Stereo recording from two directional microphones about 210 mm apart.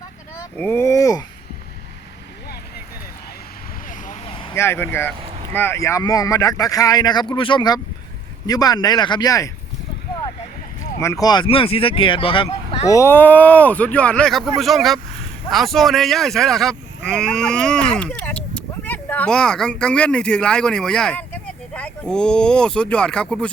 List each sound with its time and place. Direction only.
0.5 s a child's voice: 10° left (ahead or behind)
3.8 s vehicle: 35° left (ahead or behind)
4.3 s vehicle: 25° left (ahead or behind)
4.5 s speech: 10° left (ahead or behind)
11.0 s speech: 15° left (ahead or behind)